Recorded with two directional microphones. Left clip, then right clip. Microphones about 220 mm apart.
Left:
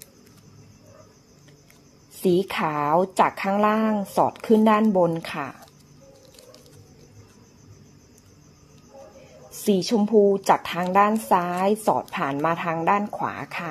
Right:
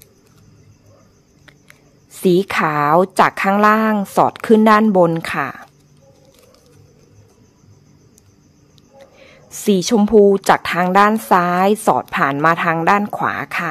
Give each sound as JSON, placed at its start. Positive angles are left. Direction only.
{"t": 2.2, "sound": "a woman's voice", "side_deg": -30}
{"t": 9.5, "sound": "a woman's voice", "side_deg": -35}